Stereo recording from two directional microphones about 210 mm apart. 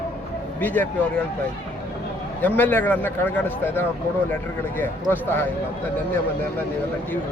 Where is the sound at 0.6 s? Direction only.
10° left (ahead or behind).